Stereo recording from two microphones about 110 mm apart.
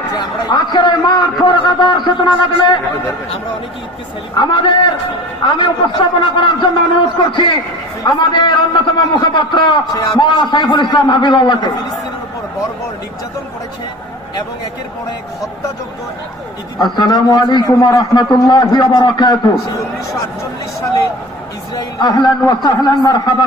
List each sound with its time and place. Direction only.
0.2 s a man's voice: 40° left (ahead or behind)
4.4 s a man's voice: 45° left (ahead or behind)
16.7 s a man's voice: 40° left (ahead or behind)
21.7 s a man's voice: 35° left (ahead or behind)